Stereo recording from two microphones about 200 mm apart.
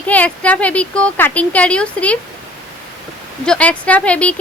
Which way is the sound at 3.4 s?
5° left (ahead or behind).